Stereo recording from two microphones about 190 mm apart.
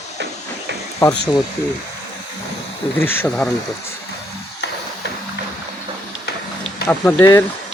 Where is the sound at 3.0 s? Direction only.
10° left (ahead or behind).